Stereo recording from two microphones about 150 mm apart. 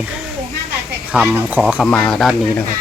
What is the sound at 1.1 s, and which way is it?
Speech, 10° right (ahead or behind).